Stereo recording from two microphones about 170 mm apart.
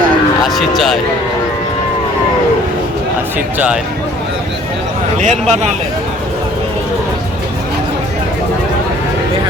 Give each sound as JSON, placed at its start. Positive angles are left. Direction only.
{"t": 0.4, "sound": "speech", "side_deg": 0}
{"t": 5.2, "sound": "speech", "side_deg": -40}